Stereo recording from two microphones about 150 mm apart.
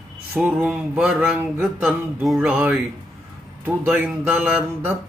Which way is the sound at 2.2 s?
5° right (ahead or behind).